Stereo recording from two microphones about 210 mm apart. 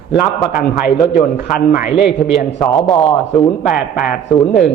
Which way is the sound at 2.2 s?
55° left (ahead or behind).